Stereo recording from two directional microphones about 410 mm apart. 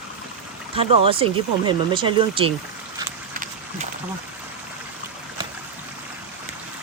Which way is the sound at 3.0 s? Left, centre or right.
Centre.